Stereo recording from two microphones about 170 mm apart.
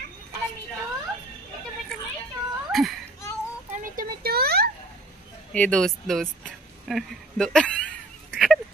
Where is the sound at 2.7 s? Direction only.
Centre (ahead or behind).